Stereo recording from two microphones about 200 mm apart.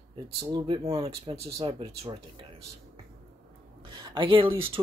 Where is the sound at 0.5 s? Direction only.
25° right (ahead or behind).